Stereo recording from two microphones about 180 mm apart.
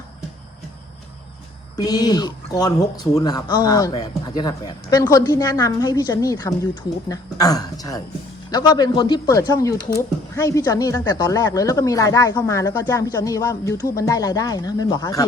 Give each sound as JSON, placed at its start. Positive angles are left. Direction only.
{"t": 1.7, "sound": "speech", "side_deg": 20}